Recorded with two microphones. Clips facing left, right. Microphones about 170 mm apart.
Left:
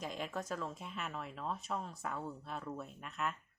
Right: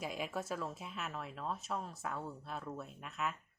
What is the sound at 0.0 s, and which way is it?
A woman's voice, 5° right (ahead or behind).